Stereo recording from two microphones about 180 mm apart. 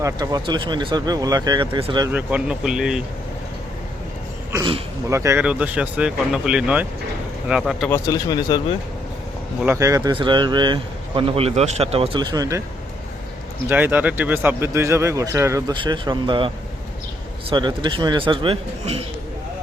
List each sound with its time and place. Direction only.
0.0 s speech: 20° right (ahead or behind)
2.0 s speech: 10° right (ahead or behind)
5.0 s speech: 15° right (ahead or behind); by 7.9 s centre (ahead or behind)
7.9 s speech: 15° left (ahead or behind)
9.6 s speech: 15° right (ahead or behind)
13.7 s speech: 10° right (ahead or behind); by 16.5 s 25° right (ahead or behind)
17.5 s speech: 25° right (ahead or behind)